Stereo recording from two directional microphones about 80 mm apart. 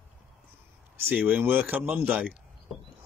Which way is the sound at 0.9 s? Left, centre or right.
Centre.